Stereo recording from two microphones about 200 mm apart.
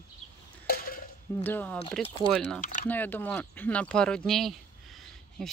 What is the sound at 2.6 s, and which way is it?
Speech, 40° left (ahead or behind).